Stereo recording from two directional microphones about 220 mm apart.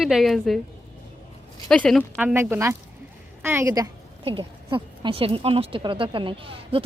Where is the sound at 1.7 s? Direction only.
Centre (ahead or behind).